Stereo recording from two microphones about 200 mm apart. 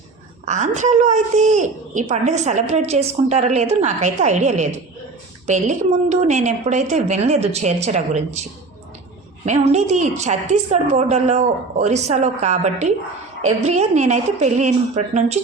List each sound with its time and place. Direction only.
0.4 s a woman's voice: 35° right (ahead or behind)
9.5 s a woman's voice: 35° right (ahead or behind)